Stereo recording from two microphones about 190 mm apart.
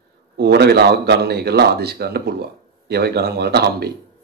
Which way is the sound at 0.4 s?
60° right (ahead or behind).